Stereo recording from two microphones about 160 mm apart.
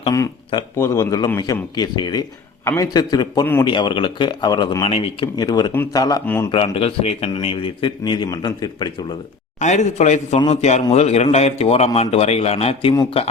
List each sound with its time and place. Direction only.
0.1 s speech: 20° left (ahead or behind); by 5.3 s 35° left (ahead or behind)
5.4 s speech: 25° left (ahead or behind)
6.5 s speech: 35° left (ahead or behind)
9.6 s a man's voice: 50° left (ahead or behind)